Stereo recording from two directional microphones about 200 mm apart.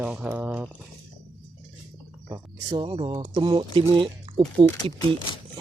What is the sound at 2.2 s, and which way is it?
Speech, 20° right (ahead or behind).